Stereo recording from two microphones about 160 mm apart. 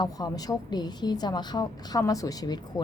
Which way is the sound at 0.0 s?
25° left (ahead or behind).